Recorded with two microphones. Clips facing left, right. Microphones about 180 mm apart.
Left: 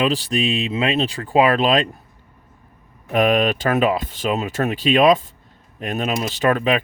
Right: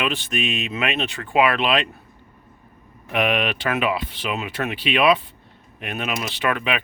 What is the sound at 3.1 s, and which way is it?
Speech, 40° left (ahead or behind).